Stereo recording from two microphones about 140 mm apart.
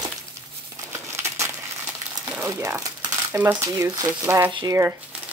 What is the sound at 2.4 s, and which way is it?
Speech, 20° right (ahead or behind).